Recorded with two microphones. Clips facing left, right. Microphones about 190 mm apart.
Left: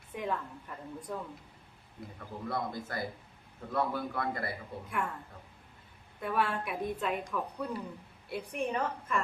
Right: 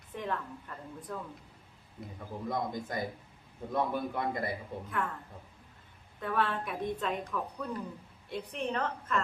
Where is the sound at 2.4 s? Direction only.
15° right (ahead or behind).